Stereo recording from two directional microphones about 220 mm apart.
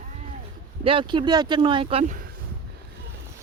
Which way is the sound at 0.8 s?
20° right (ahead or behind).